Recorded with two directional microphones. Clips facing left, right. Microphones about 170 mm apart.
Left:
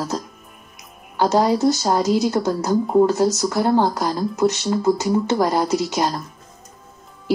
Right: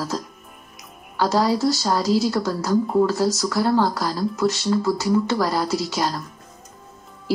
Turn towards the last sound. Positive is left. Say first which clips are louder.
# left 3 dB
turn(degrees=20)  # may be behind; listen again after turning